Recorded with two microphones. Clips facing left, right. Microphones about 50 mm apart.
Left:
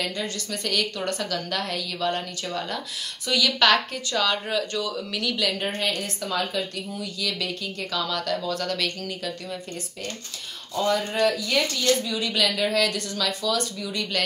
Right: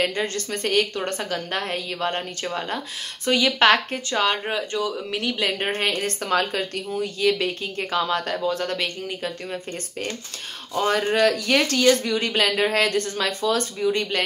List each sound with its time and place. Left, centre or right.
0.0 s a woman's voice: right
10.9 s speech: right
12.0 s a woman's voice: right